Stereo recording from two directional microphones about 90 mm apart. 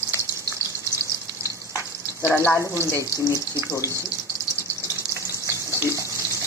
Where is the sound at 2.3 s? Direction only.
20° left (ahead or behind).